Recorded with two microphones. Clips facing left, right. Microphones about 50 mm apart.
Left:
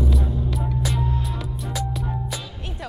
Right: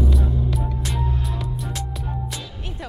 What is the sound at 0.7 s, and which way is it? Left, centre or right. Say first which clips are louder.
Music: left 2 dB; centre.